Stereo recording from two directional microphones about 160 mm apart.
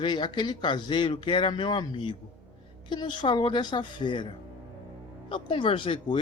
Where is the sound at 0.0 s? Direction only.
30° left (ahead or behind).